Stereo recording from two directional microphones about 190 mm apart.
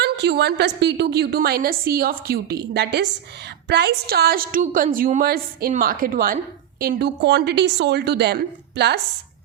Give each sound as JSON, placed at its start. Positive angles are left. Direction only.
{"t": 0.0, "sound": "a woman's voice", "side_deg": -60}